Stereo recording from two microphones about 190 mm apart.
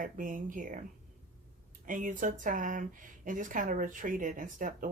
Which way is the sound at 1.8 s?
45° right (ahead or behind).